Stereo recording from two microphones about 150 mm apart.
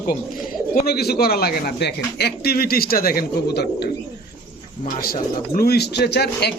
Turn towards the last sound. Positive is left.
turn(degrees=90)